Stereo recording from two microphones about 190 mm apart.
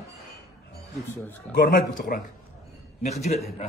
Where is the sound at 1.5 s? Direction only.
50° left (ahead or behind).